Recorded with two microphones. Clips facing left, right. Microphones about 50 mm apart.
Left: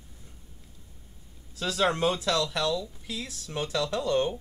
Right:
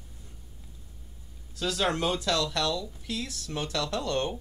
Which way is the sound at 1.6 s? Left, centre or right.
Centre.